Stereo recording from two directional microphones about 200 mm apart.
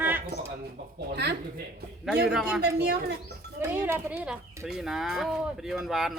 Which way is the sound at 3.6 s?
10° right (ahead or behind).